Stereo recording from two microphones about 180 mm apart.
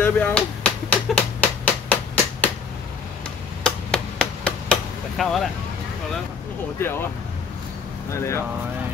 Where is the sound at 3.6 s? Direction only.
5° left (ahead or behind).